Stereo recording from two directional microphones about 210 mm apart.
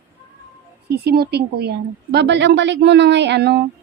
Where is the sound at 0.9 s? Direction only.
50° right (ahead or behind).